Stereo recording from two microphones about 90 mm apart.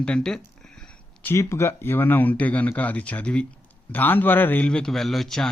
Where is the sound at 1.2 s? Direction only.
30° left (ahead or behind).